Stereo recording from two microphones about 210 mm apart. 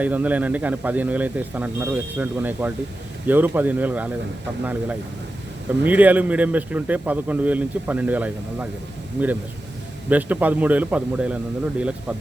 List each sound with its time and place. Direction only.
0.0 s a man's voice: 5° right (ahead or behind)
10.1 s a man's voice: 10° right (ahead or behind)